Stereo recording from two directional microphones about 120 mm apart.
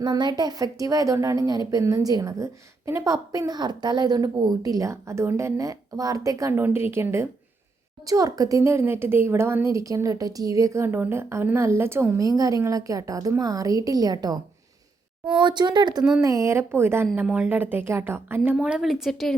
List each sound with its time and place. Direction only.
0.0 s a woman's voice: 35° right (ahead or behind)
6.6 s a woman's voice: 20° right (ahead or behind)
15.4 s a woman's voice: 40° right (ahead or behind)
16.2 s a woman's voice: 25° right (ahead or behind)
18.5 s a woman's voice: 5° right (ahead or behind)